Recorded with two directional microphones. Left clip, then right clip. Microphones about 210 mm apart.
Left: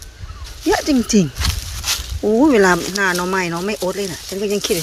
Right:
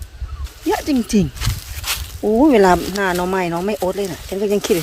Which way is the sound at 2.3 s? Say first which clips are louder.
Right 1 dB; 5° right (ahead or behind).